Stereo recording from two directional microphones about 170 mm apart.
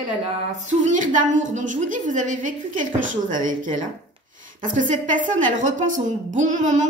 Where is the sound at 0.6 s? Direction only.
45° right (ahead or behind).